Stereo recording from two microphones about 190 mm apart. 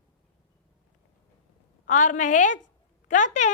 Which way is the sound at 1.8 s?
40° left (ahead or behind).